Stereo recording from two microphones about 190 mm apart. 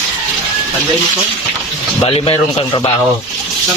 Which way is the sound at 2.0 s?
30° left (ahead or behind).